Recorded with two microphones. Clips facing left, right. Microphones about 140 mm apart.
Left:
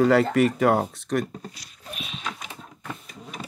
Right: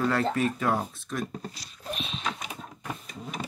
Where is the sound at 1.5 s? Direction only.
35° right (ahead or behind).